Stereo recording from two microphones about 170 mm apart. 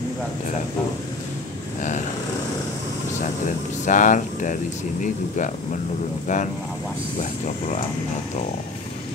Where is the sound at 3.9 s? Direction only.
50° left (ahead or behind).